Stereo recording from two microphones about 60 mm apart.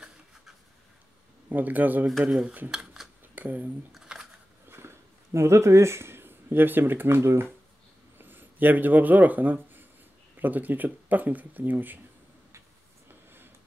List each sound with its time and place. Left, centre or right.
1.5 s speech: right
2.7 s a sound: centre
3.3 s speech: right
3.9 s camera: centre
4.6 s speech: right
13.1 s a sound: right